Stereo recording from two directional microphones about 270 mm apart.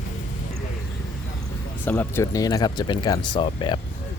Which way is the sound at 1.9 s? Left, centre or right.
Centre.